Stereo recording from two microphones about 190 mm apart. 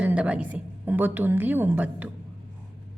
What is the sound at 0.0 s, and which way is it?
A woman's voice, 5° right (ahead or behind).